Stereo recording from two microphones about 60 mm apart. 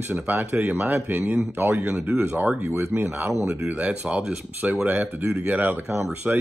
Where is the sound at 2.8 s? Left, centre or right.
Right.